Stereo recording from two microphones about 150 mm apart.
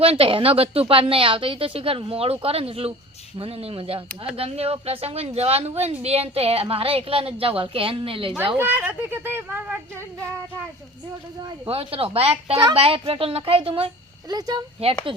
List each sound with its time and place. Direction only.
0.0 s a woman's voice: 40° right (ahead or behind)
8.5 s speech: 10° right (ahead or behind)
11.4 s a woman's voice: 35° right (ahead or behind)
14.3 s speech: 25° right (ahead or behind)